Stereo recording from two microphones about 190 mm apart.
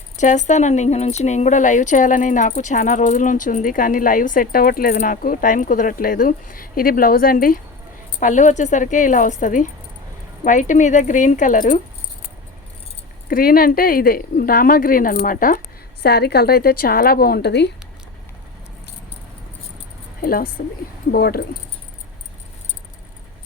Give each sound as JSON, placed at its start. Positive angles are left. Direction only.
{"t": 0.2, "sound": "a woman's voice", "side_deg": 40}
{"t": 13.2, "sound": "speech", "side_deg": 50}
{"t": 16.0, "sound": "speech", "side_deg": 55}
{"t": 20.2, "sound": "speech", "side_deg": 50}